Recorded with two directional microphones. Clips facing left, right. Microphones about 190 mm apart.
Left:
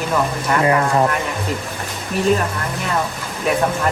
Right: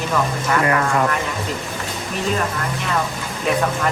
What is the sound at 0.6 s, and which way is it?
Speech, 25° left (ahead or behind).